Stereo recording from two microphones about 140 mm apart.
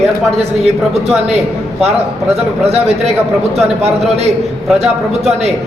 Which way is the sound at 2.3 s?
50° right (ahead or behind).